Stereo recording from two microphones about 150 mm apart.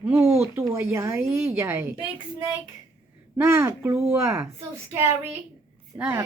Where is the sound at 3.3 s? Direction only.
20° right (ahead or behind).